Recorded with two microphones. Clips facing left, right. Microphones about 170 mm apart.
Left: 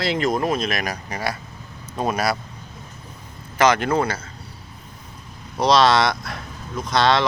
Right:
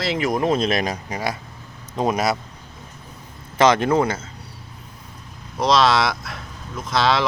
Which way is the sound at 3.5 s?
25° right (ahead or behind).